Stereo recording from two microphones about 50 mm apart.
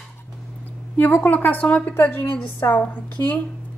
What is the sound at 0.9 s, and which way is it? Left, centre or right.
Speech, left.